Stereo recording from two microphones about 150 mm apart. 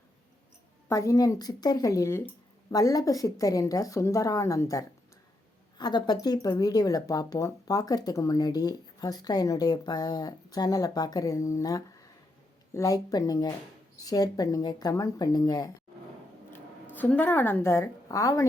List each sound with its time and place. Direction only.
0.9 s speech: 20° left (ahead or behind)
16.9 s a woman's voice: 10° left (ahead or behind)